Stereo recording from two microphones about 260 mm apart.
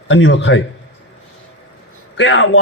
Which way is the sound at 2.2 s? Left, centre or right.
Left.